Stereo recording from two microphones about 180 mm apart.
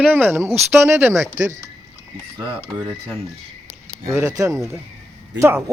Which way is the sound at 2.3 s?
25° right (ahead or behind).